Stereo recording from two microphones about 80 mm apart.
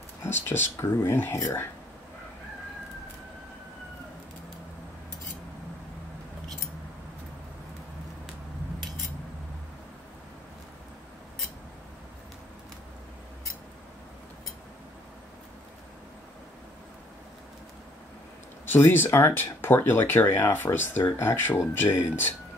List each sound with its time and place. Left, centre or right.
0.2 s speech: left
18.7 s speech: left